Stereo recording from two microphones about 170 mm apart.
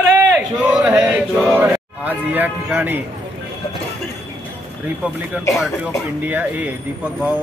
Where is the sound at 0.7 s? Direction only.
5° right (ahead or behind).